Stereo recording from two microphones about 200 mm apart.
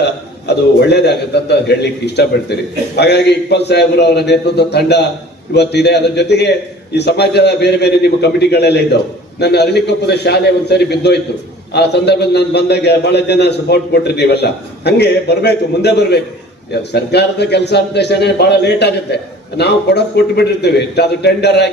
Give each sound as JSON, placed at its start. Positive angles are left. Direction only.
{"t": 0.0, "sound": "a man's voice", "side_deg": 55}